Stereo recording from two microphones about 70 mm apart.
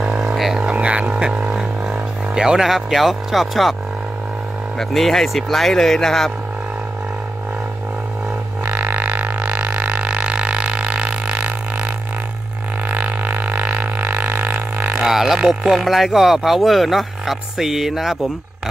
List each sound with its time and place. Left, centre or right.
0.0 s didgeridoo: centre
0.7 s didgeridoo: centre
4.7 s speech: centre
8.6 s a sound: right
12.8 s didgeridoo: right
15.0 s speech: centre